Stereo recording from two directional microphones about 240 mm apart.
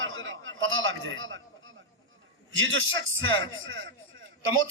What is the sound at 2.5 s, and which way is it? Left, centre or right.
Speech, right.